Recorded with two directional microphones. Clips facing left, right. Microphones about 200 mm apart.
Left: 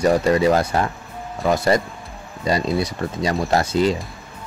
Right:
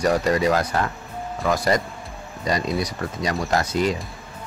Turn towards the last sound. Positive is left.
turn(degrees=30)  # may be behind; listen again after turning